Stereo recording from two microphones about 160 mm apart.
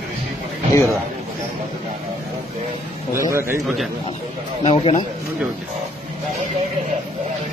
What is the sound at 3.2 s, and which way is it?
Speech, 15° right (ahead or behind).